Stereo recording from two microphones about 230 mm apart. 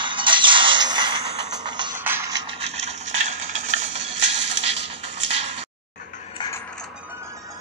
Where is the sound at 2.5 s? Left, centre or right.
Right.